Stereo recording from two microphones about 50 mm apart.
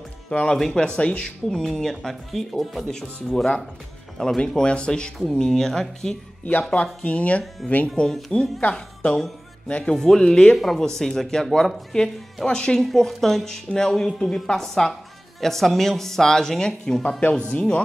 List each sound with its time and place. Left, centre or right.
0.3 s speech: left
1.6 s speech: centre
2.9 s speech: centre
6.6 s speech: left
7.9 s speech: centre
8.5 s speech: left
9.8 s speech: centre
17.5 s speech: left